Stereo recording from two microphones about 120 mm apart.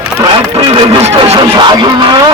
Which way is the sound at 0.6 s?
45° right (ahead or behind).